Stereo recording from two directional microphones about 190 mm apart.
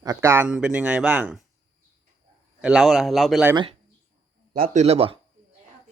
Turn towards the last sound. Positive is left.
turn(degrees=-30)  # may be behind; listen again after turning